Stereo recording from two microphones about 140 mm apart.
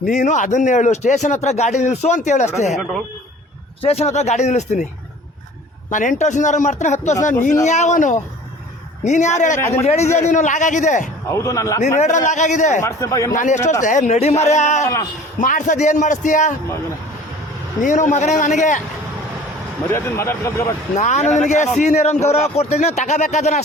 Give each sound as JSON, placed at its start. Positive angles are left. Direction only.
{"t": 0.0, "sound": "speech", "side_deg": 60}
{"t": 3.8, "sound": "speech", "side_deg": 45}
{"t": 5.9, "sound": "speech", "side_deg": 65}
{"t": 9.6, "sound": "a man's voice", "side_deg": 20}
{"t": 9.8, "sound": "speech", "side_deg": 50}
{"t": 11.3, "sound": "speech", "side_deg": 20}
{"t": 11.9, "sound": "speech", "side_deg": 60}
{"t": 12.8, "sound": "speech", "side_deg": 20}
{"t": 13.3, "sound": "speech", "side_deg": 60}
{"t": 17.8, "sound": "speech", "side_deg": 60}
{"t": 19.9, "sound": "speech", "side_deg": 20}
{"t": 20.9, "sound": "speech", "side_deg": 55}